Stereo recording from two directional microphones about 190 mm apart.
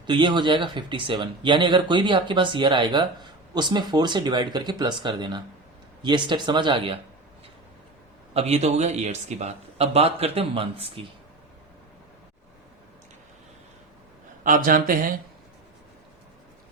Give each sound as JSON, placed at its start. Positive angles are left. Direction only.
{"t": 0.0, "sound": "speech", "side_deg": -25}
{"t": 8.3, "sound": "speech", "side_deg": -35}
{"t": 14.4, "sound": "speech", "side_deg": -45}